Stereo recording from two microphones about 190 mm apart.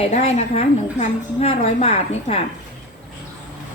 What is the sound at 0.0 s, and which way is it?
A woman's voice, 35° left (ahead or behind).